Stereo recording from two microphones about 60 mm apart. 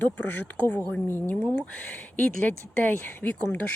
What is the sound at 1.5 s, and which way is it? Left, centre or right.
Speech, centre.